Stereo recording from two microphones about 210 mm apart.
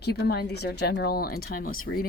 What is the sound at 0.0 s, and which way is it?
Speech, 50° left (ahead or behind).